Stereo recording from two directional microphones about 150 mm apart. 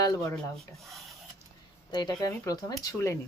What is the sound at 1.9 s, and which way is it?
Speech, 25° left (ahead or behind).